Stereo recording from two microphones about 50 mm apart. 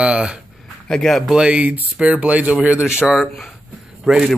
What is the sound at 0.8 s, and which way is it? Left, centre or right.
Speech, centre.